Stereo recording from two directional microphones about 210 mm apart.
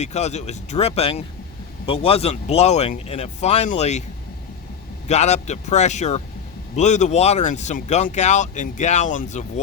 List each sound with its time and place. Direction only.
0.0 s speech: 30° left (ahead or behind)
5.0 s speech: 30° left (ahead or behind)